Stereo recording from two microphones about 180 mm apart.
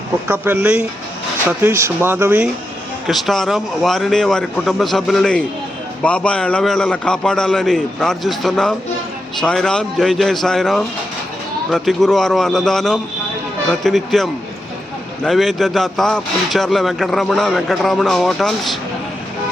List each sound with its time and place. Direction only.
0.3 s speech: 10° right (ahead or behind)
3.1 s speech: centre (ahead or behind)